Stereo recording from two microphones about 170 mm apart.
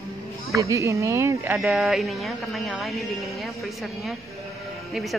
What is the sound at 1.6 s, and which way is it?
A woman's voice, centre (ahead or behind).